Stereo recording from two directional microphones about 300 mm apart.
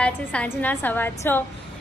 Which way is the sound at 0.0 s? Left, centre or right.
Centre.